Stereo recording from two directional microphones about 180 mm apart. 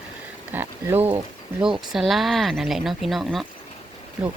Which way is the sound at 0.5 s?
10° right (ahead or behind).